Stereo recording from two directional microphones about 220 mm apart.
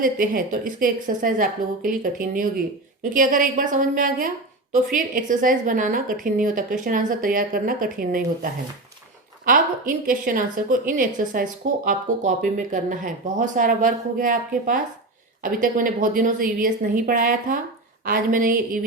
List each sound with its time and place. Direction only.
0.0 s a woman's voice: 40° right (ahead or behind)
9.5 s a woman's voice: 35° right (ahead or behind)